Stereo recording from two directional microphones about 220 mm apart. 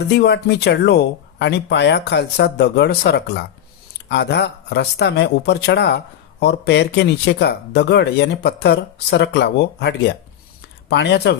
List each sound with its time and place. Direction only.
0.1 s speech: 50° left (ahead or behind)